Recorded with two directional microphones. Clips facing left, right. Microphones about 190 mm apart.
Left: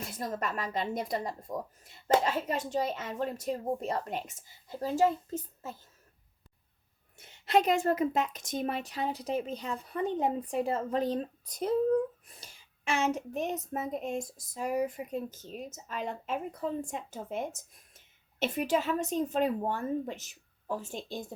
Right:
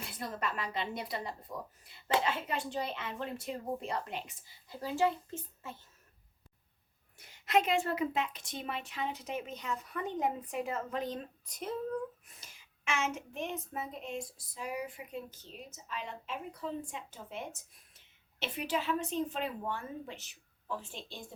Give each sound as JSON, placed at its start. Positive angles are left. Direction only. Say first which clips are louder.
{"t": 0.0, "sound": "a woman's voice", "louder": "left 4 dB", "side_deg": 45}
{"t": 7.2, "sound": "a woman's voice", "louder": "left 3 dB", "side_deg": 25}